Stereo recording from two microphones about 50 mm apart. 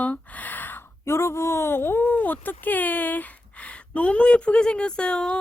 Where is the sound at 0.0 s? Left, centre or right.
Left.